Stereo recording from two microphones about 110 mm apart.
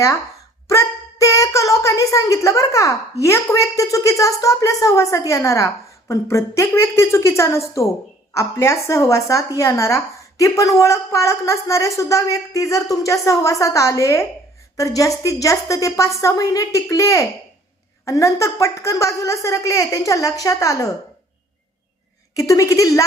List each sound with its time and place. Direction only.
0.7 s a woman's voice: 30° left (ahead or behind)
22.4 s speech: 30° left (ahead or behind)